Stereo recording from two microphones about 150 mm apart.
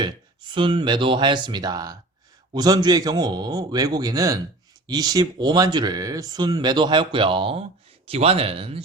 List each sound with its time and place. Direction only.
0.0 s speech: 35° right (ahead or behind)